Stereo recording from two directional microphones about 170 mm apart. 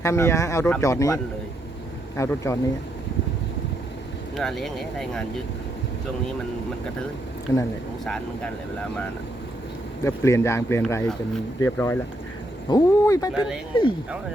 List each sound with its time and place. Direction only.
0.0 s speech: 15° left (ahead or behind)
4.4 s speech: centre (ahead or behind)
7.5 s speech: 15° left (ahead or behind)
10.0 s speech: 15° left (ahead or behind)